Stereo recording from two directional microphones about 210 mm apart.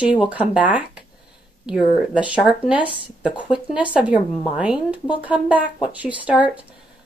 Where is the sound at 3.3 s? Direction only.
20° left (ahead or behind).